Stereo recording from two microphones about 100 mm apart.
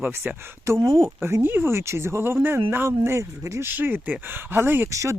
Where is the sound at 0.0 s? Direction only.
20° right (ahead or behind).